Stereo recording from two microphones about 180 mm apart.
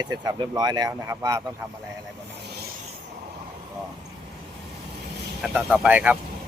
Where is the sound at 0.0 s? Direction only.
20° right (ahead or behind).